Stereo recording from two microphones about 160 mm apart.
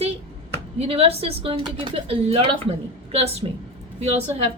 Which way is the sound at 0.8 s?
40° right (ahead or behind).